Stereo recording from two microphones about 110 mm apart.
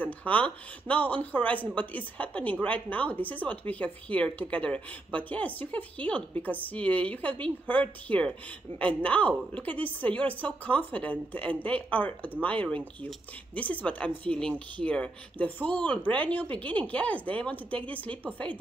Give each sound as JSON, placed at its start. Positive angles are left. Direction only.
{"t": 0.0, "sound": "a woman's voice", "side_deg": 15}